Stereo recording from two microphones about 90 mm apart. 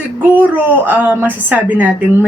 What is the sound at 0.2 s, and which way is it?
Speech, 20° right (ahead or behind).